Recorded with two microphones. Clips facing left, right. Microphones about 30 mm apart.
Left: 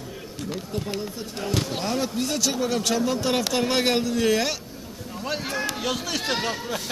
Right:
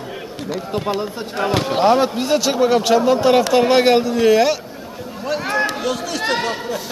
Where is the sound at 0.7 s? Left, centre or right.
Right; by 4.6 s centre.